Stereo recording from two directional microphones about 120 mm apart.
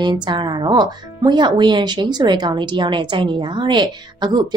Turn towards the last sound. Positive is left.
turn(degrees=-40)  # may be behind; listen again after turning